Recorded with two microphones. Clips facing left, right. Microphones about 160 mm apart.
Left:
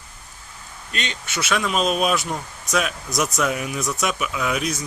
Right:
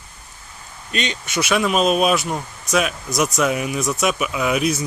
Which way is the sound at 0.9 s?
15° right (ahead or behind).